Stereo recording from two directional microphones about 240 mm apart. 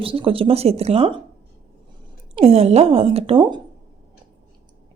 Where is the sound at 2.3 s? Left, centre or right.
Right.